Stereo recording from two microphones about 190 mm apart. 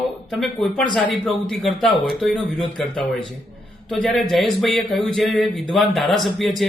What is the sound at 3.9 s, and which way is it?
Speech, 5° left (ahead or behind).